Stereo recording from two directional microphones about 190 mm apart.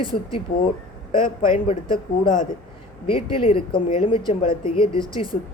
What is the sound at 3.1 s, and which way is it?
Speech, 30° left (ahead or behind).